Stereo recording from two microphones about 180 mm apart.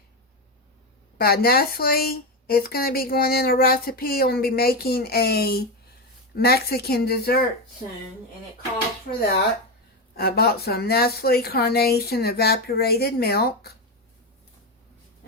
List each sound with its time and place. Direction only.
1.2 s speech: 60° left (ahead or behind)
10.2 s speech: 60° left (ahead or behind)